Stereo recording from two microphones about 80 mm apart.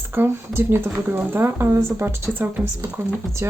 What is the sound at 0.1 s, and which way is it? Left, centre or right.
Speech, right.